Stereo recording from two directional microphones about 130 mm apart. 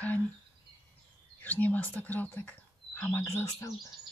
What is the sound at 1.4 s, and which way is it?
Speech, 15° left (ahead or behind).